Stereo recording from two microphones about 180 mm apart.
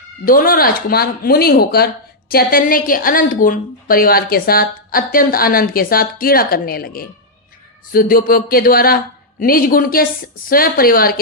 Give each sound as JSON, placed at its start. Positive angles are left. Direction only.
{"t": 0.3, "sound": "a woman's voice", "side_deg": 50}